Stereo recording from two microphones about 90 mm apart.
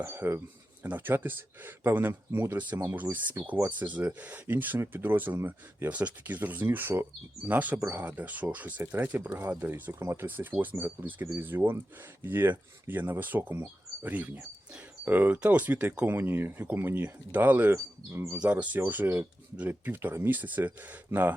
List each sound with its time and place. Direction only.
0.0 s speech: 25° right (ahead or behind)
18.3 s speech: 15° right (ahead or behind)